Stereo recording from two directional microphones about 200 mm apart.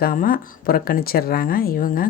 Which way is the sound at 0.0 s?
45° left (ahead or behind).